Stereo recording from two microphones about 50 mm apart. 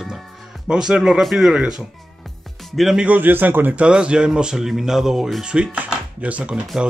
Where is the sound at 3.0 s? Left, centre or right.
Right.